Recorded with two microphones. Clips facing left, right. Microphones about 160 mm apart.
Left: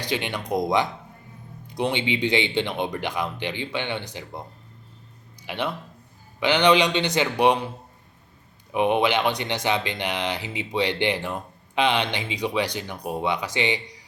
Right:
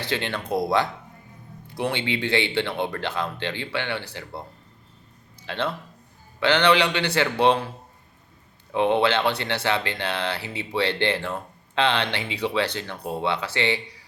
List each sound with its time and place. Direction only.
0.0 s speech: 15° left (ahead or behind)
8.7 s speech: 15° left (ahead or behind)